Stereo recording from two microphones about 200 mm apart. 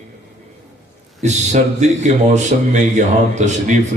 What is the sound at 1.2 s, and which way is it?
Speech, 35° right (ahead or behind).